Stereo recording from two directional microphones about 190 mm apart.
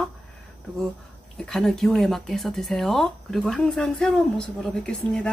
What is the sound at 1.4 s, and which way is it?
Speech, 5° left (ahead or behind).